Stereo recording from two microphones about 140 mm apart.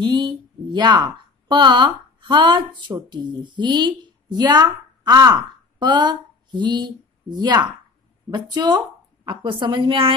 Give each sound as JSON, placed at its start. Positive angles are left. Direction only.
{"t": 0.0, "sound": "a woman's voice", "side_deg": -35}